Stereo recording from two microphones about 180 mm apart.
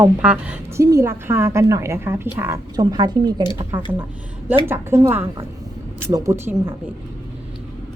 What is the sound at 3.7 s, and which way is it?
A woman's voice, 10° right (ahead or behind).